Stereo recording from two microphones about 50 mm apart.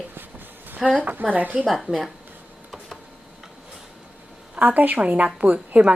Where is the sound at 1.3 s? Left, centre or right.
Right.